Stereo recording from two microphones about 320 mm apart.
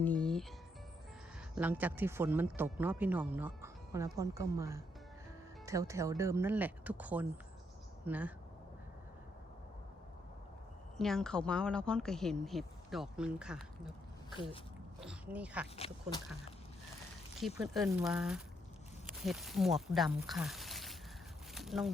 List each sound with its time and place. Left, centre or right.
0.0 s music: centre
1.5 s speech: centre
10.9 s speech: centre
15.0 s speech: centre
15.7 s speech: centre
17.4 s speech: centre
21.5 s a sound: centre